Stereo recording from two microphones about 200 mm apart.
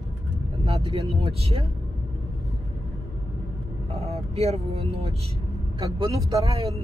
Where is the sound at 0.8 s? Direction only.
30° right (ahead or behind).